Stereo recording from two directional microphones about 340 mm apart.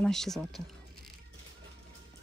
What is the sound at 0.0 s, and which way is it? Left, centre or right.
Speech, centre.